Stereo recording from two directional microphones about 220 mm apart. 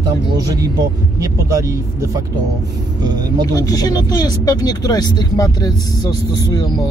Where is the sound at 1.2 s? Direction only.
15° right (ahead or behind).